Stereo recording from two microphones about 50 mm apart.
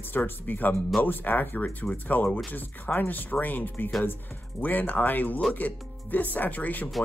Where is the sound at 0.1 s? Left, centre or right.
Left.